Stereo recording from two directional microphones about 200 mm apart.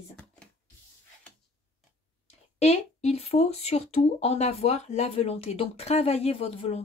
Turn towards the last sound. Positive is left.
turn(degrees=30)  # may be behind; listen again after turning